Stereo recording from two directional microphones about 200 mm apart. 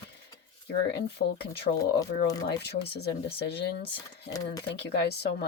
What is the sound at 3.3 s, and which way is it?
Speech, 55° left (ahead or behind).